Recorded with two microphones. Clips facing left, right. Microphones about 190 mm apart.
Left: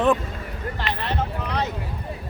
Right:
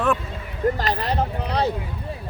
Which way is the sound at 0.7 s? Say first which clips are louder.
Right 3 dB; 40° right (ahead or behind).